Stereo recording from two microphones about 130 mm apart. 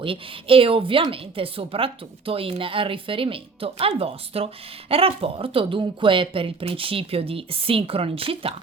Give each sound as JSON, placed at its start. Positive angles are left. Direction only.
{"t": 0.0, "sound": "a woman's voice", "side_deg": -45}